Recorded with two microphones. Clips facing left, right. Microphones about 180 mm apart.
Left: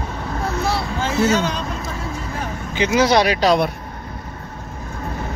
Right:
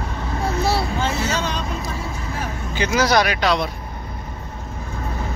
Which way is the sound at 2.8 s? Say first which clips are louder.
Left 3 dB; 20° left (ahead or behind).